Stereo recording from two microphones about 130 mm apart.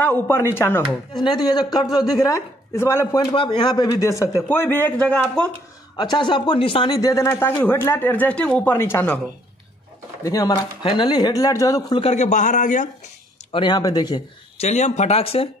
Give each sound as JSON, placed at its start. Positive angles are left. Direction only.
{"t": 0.3, "sound": "speech", "side_deg": 20}
{"t": 1.1, "sound": "speech", "side_deg": 35}
{"t": 3.2, "sound": "speech", "side_deg": 40}
{"t": 4.1, "sound": "speech", "side_deg": 25}
{"t": 5.9, "sound": "speech", "side_deg": 35}
{"t": 6.9, "sound": "speech", "side_deg": 25}
{"t": 10.2, "sound": "speech", "side_deg": 30}
{"t": 10.8, "sound": "speech", "side_deg": 40}
{"t": 12.0, "sound": "speech", "side_deg": 60}
{"t": 13.5, "sound": "speech", "side_deg": 35}
{"t": 14.6, "sound": "speech", "side_deg": 60}